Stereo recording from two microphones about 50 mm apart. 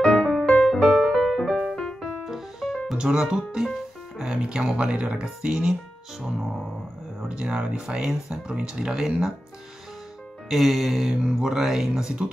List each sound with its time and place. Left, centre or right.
0.0 s music: centre
2.2 s music: centre
3.0 s speech: centre
10.5 s speech: centre